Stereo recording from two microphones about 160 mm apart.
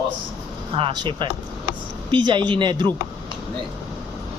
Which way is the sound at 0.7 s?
30° right (ahead or behind).